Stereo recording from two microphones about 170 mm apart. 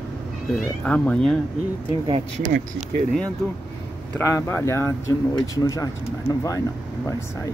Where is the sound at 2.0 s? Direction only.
35° right (ahead or behind).